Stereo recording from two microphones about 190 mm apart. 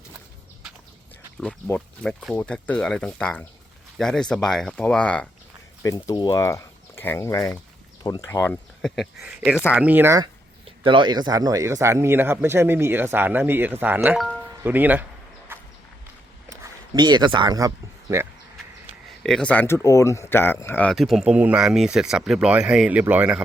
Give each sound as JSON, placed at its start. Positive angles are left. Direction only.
{"t": 1.4, "sound": "speech", "side_deg": 5}
{"t": 5.8, "sound": "speech", "side_deg": 15}
{"t": 8.8, "sound": "speech", "side_deg": 0}
{"t": 10.7, "sound": "speech", "side_deg": -25}
{"t": 15.5, "sound": "horse", "side_deg": -10}
{"t": 16.5, "sound": "speech", "side_deg": -20}
{"t": 19.0, "sound": "speech", "side_deg": 0}